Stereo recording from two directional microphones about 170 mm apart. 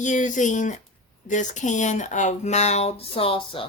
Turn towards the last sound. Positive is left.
turn(degrees=30)  # may be behind; listen again after turning